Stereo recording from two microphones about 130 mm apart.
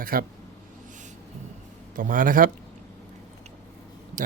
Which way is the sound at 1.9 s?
90° right.